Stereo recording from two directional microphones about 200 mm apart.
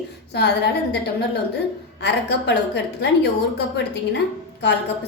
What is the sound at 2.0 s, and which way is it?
A woman's voice, 60° left (ahead or behind).